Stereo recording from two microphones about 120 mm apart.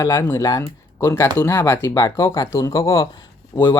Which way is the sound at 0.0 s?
25° left (ahead or behind).